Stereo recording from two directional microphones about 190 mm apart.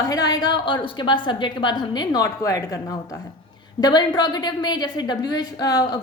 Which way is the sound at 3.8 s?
20° left (ahead or behind).